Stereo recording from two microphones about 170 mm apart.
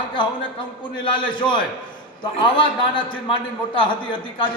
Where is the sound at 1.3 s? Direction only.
25° left (ahead or behind).